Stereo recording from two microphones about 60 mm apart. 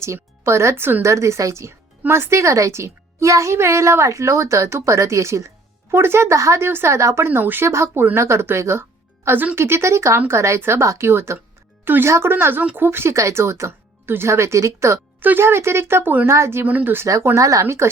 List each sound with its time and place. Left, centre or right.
0.0 s speech: right
0.8 s speech: right
1.0 s speech: right
5.9 s speech: right
6.7 s speech: right
7.3 s speech: right
9.6 s speech: right
13.1 s speech: right
15.2 s speech: right
16.6 s speech: right
17.3 s speech: right